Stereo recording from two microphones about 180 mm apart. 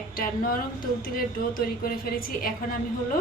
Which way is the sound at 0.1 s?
50° left (ahead or behind).